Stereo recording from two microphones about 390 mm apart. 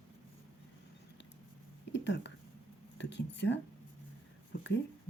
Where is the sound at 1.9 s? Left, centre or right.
Left.